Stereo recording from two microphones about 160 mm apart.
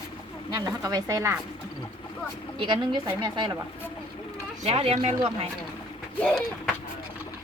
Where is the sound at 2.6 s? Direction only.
30° right (ahead or behind).